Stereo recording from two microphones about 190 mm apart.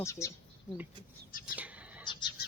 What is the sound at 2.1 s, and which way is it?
Neigh, 25° left (ahead or behind).